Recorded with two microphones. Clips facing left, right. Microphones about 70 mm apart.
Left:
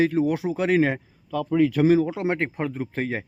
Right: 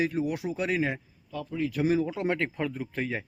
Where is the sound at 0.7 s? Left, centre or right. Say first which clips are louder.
Left 9 dB; left.